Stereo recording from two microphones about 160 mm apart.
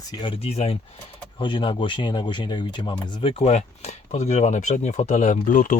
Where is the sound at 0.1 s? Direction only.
30° left (ahead or behind); by 5.8 s 55° left (ahead or behind).